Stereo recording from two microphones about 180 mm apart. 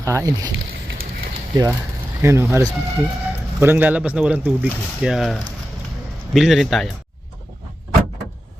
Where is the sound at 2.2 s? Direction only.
15° right (ahead or behind).